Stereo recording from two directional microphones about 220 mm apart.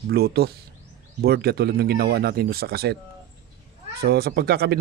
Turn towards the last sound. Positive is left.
turn(degrees=-45)  # may be behind; listen again after turning